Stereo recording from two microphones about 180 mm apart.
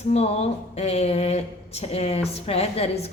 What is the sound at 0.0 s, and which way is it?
Speech, 35° left (ahead or behind).